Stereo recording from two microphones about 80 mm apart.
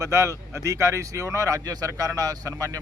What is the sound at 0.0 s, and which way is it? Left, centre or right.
Speech, right.